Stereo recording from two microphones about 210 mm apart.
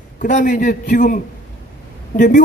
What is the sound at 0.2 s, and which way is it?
Speech, 40° left (ahead or behind).